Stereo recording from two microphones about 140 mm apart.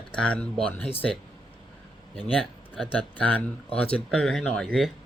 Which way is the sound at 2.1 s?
Centre (ahead or behind).